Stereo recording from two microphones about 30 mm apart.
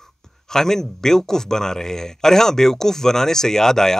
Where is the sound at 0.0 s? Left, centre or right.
Centre.